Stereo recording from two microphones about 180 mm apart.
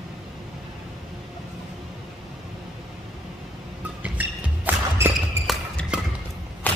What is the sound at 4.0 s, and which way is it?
Music, 10° right (ahead or behind).